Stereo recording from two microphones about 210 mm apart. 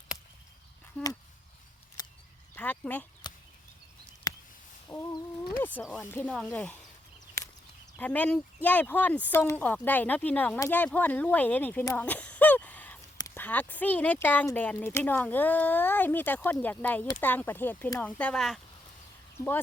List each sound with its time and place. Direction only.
0.9 s speech: 5° left (ahead or behind)
2.0 s a sound: 20° left (ahead or behind)
2.6 s speech: 5° left (ahead or behind)
4.3 s a sound: 20° left (ahead or behind)
4.9 s fowl: 10° left (ahead or behind)
5.6 s speech: 5° left (ahead or behind)
7.9 s speech: 5° left (ahead or behind)